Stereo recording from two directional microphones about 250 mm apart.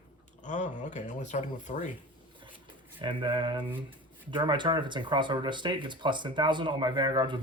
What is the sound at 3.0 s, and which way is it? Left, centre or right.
Speech, centre.